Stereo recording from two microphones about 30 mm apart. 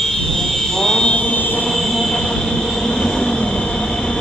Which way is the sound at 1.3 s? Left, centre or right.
Left.